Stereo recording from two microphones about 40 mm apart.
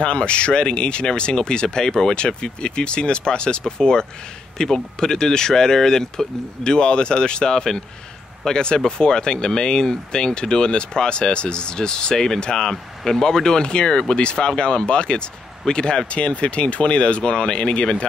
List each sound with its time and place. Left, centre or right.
0.0 s speech: left